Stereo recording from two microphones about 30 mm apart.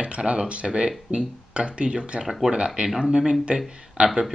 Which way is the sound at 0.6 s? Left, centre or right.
Right.